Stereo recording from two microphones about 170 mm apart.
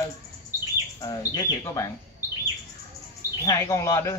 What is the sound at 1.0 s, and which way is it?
Speech, 25° left (ahead or behind).